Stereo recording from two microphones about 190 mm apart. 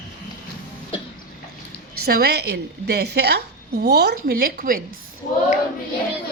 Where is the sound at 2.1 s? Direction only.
55° right (ahead or behind).